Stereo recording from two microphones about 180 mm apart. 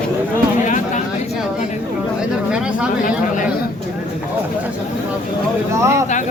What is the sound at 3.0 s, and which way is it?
Speech, 45° left (ahead or behind).